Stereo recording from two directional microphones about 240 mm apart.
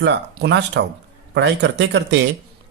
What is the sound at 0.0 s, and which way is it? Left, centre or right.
Speech, right.